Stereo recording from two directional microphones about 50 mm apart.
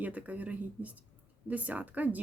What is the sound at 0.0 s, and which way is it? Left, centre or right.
Speech, right.